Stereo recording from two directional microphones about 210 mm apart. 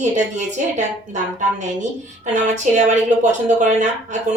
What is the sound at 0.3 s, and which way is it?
Speech, 35° right (ahead or behind).